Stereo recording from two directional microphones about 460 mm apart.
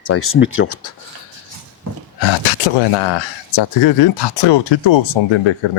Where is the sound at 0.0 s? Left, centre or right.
Left.